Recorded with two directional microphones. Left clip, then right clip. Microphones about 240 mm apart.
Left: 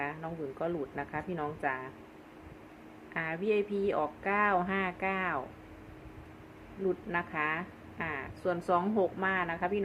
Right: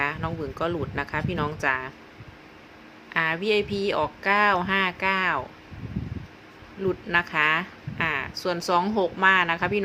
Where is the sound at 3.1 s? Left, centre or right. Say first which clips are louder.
Right 8 dB; right.